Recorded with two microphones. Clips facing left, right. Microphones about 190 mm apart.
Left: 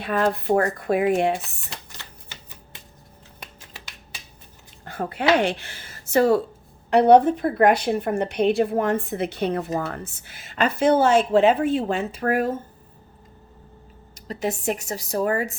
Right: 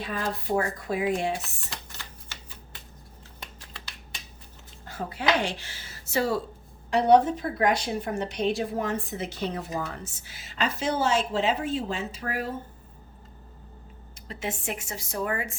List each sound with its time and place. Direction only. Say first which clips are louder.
0.0 s a woman's voice: left 9 dB; 60° left (ahead or behind)
4.9 s a woman's voice: left 6 dB; 60° left (ahead or behind)
14.3 s a woman's voice: left 8 dB; 40° left (ahead or behind)